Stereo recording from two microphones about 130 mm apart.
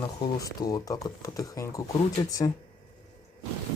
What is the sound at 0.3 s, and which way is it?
Speech, 25° left (ahead or behind).